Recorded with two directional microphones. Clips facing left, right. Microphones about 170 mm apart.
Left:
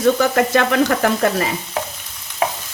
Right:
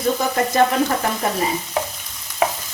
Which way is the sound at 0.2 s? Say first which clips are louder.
Left 2 dB; 75° left (ahead or behind).